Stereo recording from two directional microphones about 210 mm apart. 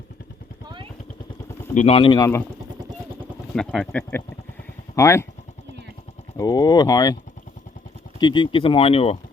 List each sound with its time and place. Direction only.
1.7 s speech: 30° left (ahead or behind)
3.5 s speech: centre (ahead or behind)
4.9 s speech: 15° left (ahead or behind)
6.3 s speech: 15° left (ahead or behind)
8.2 s speech: 25° left (ahead or behind)